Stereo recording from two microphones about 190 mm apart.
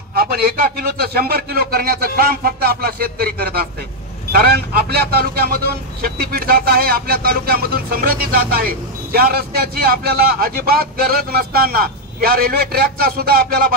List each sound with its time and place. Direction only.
0.1 s a man's voice: 55° right (ahead or behind)